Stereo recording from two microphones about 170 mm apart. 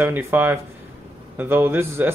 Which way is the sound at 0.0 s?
10° right (ahead or behind).